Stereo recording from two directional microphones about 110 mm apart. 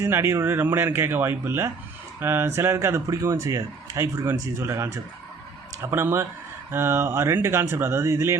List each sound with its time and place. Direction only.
0.0 s speech: 25° right (ahead or behind)